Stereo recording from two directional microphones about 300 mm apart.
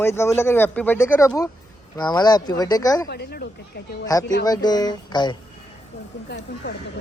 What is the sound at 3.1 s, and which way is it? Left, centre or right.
Speech, left.